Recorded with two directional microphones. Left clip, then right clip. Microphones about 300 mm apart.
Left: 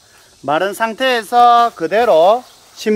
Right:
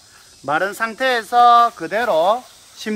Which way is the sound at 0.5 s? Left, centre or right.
Left.